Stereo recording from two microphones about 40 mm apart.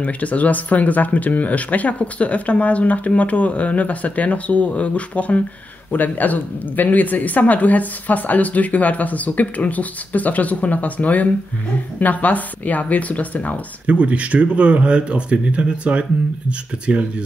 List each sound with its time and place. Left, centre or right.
0.0 s speech: left
13.8 s speech: right